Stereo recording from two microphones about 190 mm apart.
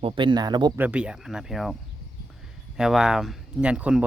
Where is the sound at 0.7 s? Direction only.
10° right (ahead or behind).